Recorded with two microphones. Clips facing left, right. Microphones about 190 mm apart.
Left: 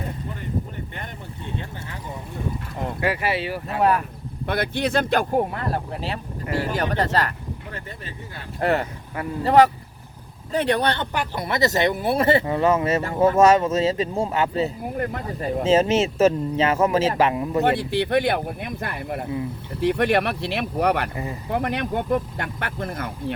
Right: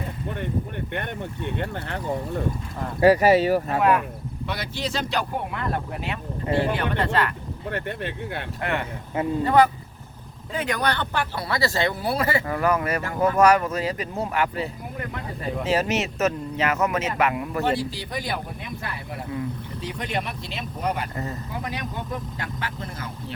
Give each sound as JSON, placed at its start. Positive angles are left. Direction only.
{"t": 1.5, "sound": "speech", "side_deg": -65}
{"t": 3.0, "sound": "speech", "side_deg": -40}
{"t": 3.8, "sound": "speech", "side_deg": 35}
{"t": 4.4, "sound": "speech", "side_deg": 55}
{"t": 5.4, "sound": "speech", "side_deg": 35}
{"t": 7.7, "sound": "speech", "side_deg": -65}
{"t": 8.6, "sound": "speech", "side_deg": 35}
{"t": 10.5, "sound": "speech", "side_deg": 35}
{"t": 14.9, "sound": "speech", "side_deg": 45}
{"t": 15.6, "sound": "speech", "side_deg": 25}
{"t": 17.7, "sound": "speech", "side_deg": 60}